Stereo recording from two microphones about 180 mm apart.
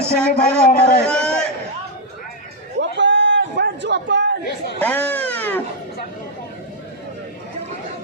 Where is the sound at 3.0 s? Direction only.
90° right.